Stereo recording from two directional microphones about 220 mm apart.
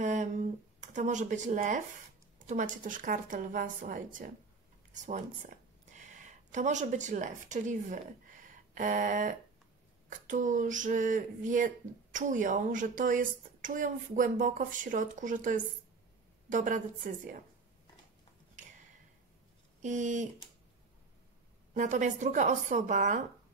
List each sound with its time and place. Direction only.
0.0 s a sound: 35° right (ahead or behind)
2.8 s speech: 35° right (ahead or behind)
8.5 s a sound: 35° right (ahead or behind)
10.0 s speech: 35° right (ahead or behind)
19.8 s speech: 35° right (ahead or behind)
21.7 s speech: 35° right (ahead or behind)